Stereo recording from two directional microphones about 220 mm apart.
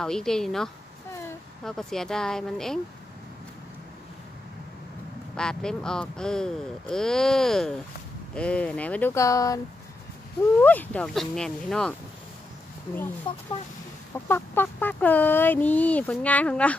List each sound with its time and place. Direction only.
0.0 s speech: centre (ahead or behind)
5.3 s speech: 5° left (ahead or behind)
10.6 s speech: 10° left (ahead or behind)
13.3 s speech: 25° left (ahead or behind)
14.2 s speech: 10° left (ahead or behind)